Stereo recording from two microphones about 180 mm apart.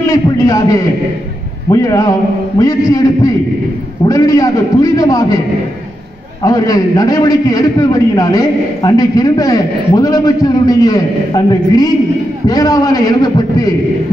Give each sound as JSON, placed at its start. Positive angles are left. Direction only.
{"t": 0.0, "sound": "a man's voice", "side_deg": 15}
{"t": 6.4, "sound": "a man's voice", "side_deg": 20}